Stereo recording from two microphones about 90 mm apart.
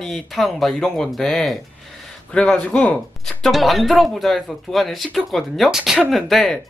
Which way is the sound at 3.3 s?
Centre (ahead or behind).